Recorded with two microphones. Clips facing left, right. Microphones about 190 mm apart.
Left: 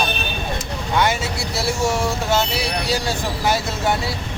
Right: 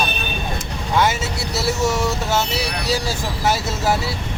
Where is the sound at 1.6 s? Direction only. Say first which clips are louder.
Right 1 dB; 5° right (ahead or behind).